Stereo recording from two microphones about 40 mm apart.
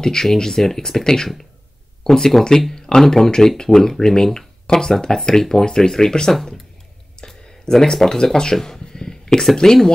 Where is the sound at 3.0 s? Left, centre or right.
Centre.